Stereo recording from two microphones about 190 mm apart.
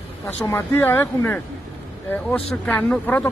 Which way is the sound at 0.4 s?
10° left (ahead or behind).